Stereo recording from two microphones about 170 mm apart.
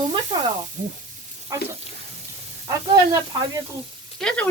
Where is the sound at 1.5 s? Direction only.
20° right (ahead or behind).